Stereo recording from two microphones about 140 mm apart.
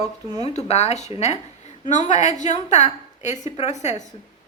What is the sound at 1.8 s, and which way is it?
A woman's voice, 60° left (ahead or behind).